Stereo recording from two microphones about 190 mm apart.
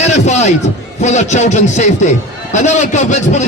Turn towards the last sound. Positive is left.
turn(degrees=40)  # may be behind; listen again after turning